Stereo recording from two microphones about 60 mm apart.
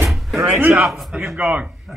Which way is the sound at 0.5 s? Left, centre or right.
Right.